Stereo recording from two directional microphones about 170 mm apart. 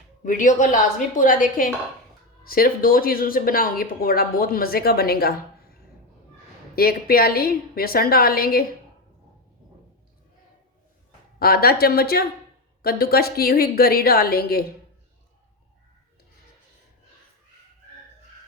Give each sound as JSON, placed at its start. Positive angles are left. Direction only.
{"t": 0.3, "sound": "a woman's voice", "side_deg": 50}
{"t": 6.7, "sound": "speech", "side_deg": 60}
{"t": 11.3, "sound": "speech", "side_deg": 65}